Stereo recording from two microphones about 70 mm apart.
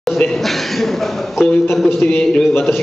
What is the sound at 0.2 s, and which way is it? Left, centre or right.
A man's voice, centre.